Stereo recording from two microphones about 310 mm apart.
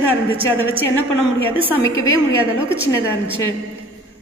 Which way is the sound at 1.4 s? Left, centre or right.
Centre.